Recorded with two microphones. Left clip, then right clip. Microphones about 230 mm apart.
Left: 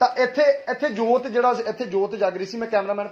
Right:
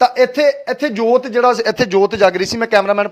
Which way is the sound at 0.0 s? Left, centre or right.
Right.